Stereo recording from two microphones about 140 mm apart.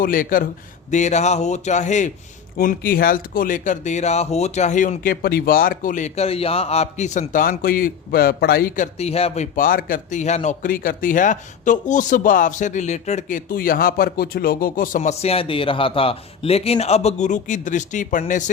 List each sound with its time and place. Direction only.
0.0 s a man's voice: 80° left
0.9 s speech: 55° left (ahead or behind)
2.6 s speech: 90° left; by 9.0 s 65° left (ahead or behind)
9.0 s speech: 45° left (ahead or behind)
9.6 s speech: 85° left; by 18.5 s 60° left (ahead or behind)